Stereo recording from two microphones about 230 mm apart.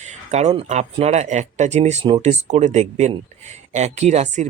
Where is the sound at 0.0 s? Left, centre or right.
Right.